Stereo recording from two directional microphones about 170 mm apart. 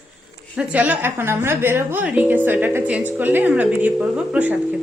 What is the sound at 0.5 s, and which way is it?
A woman's voice, 10° right (ahead or behind).